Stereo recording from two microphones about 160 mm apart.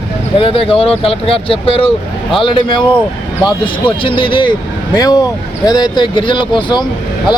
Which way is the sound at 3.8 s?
30° left (ahead or behind).